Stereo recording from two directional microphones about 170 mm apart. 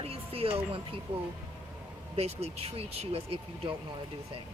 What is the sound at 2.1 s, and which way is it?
Speech, 35° right (ahead or behind).